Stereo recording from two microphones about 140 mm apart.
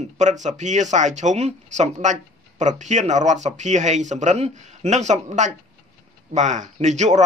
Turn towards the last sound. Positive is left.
turn(degrees=-55)  # may be behind; listen again after turning